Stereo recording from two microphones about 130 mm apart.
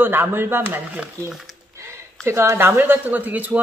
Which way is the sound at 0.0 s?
15° right (ahead or behind).